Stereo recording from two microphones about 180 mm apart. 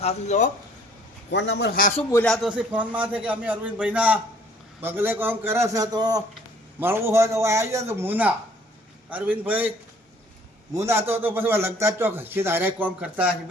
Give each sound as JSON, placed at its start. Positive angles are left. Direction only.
{"t": 0.0, "sound": "speech", "side_deg": 40}
{"t": 1.3, "sound": "a man's voice", "side_deg": 80}
{"t": 2.2, "sound": "a man's voice", "side_deg": 0}
{"t": 10.8, "sound": "a man's voice", "side_deg": -15}